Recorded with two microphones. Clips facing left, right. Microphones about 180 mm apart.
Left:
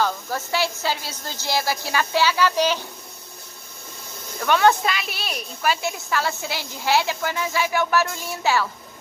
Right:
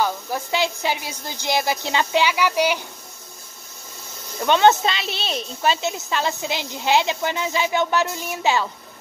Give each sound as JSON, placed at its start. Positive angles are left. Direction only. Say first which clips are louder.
{"t": 0.0, "sound": "speech", "louder": "right 1 dB", "side_deg": -15}
{"t": 4.4, "sound": "a woman's voice", "louder": "right 2 dB", "side_deg": -20}